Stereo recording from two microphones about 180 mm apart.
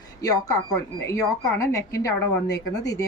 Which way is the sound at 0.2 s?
20° left (ahead or behind).